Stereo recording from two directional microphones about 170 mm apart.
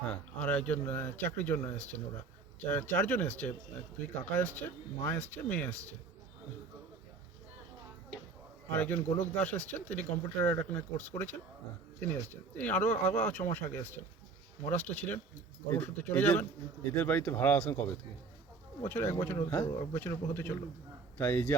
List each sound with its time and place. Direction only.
0.0 s speech: 10° left (ahead or behind)
8.7 s speech: 10° left (ahead or behind)
9.0 s speech: 40° left (ahead or behind)
9.4 s speech: 10° left (ahead or behind)
18.9 s speech: 15° left (ahead or behind)